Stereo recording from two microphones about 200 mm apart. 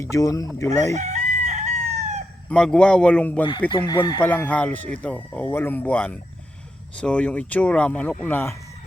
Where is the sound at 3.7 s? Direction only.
20° left (ahead or behind).